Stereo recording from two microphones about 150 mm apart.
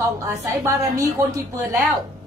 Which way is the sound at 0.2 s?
20° right (ahead or behind).